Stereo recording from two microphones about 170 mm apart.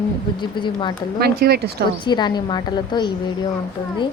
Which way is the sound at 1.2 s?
65° right (ahead or behind).